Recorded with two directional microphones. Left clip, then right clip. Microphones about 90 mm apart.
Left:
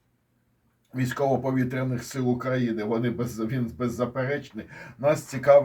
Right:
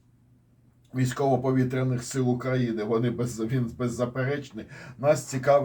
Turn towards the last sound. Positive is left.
turn(degrees=-15)  # may be behind; listen again after turning